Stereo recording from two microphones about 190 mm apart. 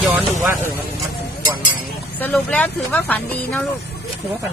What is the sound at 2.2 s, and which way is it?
Speech, 10° left (ahead or behind).